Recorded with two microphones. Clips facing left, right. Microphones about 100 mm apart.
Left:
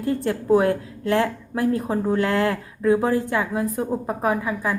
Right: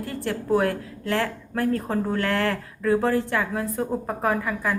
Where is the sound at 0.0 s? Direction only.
20° left (ahead or behind).